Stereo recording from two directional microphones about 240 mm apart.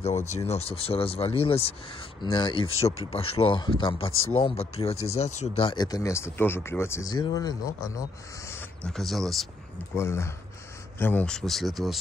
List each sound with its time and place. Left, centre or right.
0.0 s speech: left; by 9.5 s centre
9.9 s speech: centre